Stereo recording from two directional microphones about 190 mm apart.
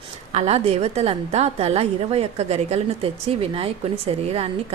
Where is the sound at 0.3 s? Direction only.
35° right (ahead or behind).